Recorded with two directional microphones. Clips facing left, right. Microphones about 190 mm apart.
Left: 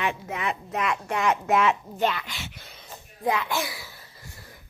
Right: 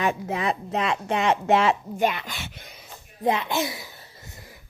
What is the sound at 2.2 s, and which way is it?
Speech, 50° right (ahead or behind).